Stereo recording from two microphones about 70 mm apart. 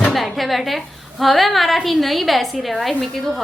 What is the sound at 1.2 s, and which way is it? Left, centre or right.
A woman's voice, centre.